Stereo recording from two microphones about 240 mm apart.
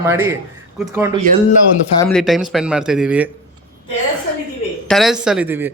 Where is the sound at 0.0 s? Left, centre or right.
Centre.